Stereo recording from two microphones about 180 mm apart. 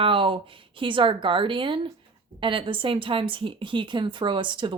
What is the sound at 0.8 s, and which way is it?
A woman's voice, 30° right (ahead or behind).